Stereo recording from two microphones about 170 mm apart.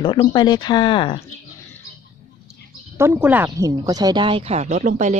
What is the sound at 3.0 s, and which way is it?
Speech, 10° right (ahead or behind).